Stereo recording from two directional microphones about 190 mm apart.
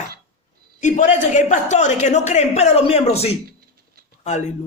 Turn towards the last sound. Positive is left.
turn(degrees=35)  # may be behind; listen again after turning